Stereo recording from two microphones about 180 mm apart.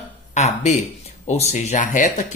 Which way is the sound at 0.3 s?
40° left (ahead or behind).